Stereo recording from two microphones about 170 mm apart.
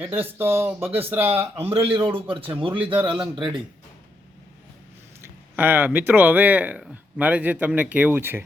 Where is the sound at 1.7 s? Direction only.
30° right (ahead or behind).